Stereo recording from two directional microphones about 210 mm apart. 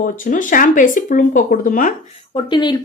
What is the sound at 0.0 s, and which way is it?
Speech, 40° left (ahead or behind).